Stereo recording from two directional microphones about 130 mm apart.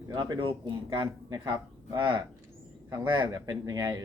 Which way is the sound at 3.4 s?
25° right (ahead or behind).